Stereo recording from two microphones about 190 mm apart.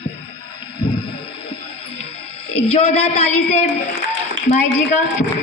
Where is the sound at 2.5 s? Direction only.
35° left (ahead or behind).